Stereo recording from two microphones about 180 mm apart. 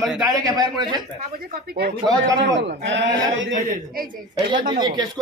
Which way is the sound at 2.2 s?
85° right.